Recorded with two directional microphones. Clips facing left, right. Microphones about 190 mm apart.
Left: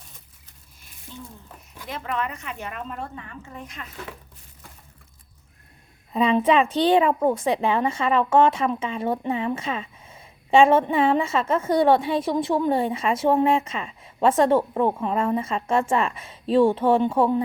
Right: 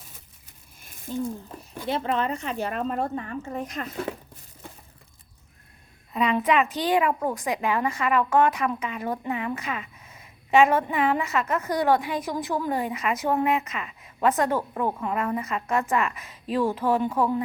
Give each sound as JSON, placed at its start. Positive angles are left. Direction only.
{"t": 0.8, "sound": "a sound", "side_deg": -45}
{"t": 1.8, "sound": "speech", "side_deg": -30}
{"t": 6.1, "sound": "a woman's voice", "side_deg": 30}